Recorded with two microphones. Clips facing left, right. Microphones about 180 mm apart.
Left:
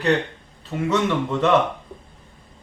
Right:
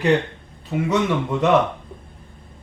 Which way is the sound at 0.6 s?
10° right (ahead or behind).